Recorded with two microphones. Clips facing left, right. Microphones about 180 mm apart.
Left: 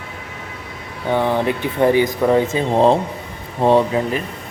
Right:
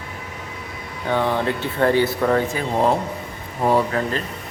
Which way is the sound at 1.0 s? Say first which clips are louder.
Left 3 dB; 15° left (ahead or behind).